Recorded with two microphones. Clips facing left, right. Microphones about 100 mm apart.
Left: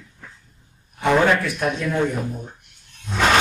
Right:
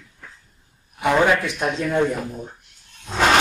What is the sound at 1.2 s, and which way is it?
Speech, 15° right (ahead or behind).